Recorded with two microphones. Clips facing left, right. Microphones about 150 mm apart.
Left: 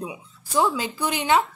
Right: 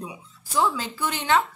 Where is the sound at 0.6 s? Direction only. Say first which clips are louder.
Left 2 dB; 15° left (ahead or behind).